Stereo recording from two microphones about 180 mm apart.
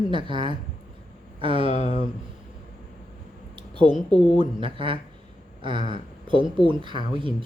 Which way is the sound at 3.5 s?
25° right (ahead or behind).